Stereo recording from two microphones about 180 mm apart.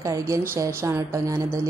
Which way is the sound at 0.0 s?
20° right (ahead or behind).